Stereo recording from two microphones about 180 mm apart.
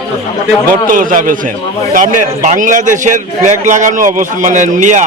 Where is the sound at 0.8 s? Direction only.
45° right (ahead or behind).